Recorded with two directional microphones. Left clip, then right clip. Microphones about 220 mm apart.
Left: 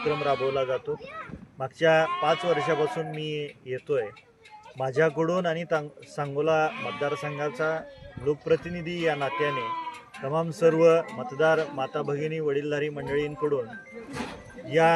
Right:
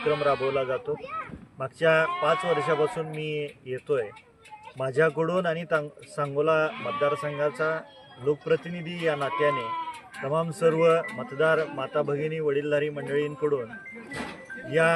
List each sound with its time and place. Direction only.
0.1 s speech: centre (ahead or behind)
14.7 s speech: centre (ahead or behind)